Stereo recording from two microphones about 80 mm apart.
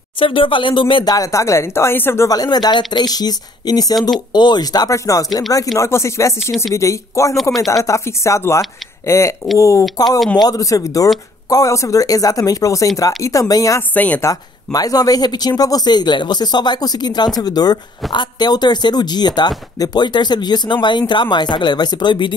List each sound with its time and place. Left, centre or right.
0.2 s speech: left
1.1 s speech: left
2.2 s speech: left
4.3 s speech: left
4.9 s speech: left
9.9 s speech: left
13.9 s a woman's voice: centre
14.2 s speech: left
18.1 s speech: left